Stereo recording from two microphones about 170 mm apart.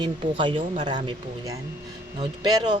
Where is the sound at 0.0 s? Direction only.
30° right (ahead or behind).